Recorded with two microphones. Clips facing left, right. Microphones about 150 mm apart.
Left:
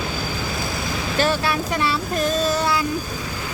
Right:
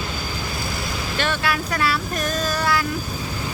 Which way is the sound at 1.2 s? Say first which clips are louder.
Left 3 dB; 30° left (ahead or behind).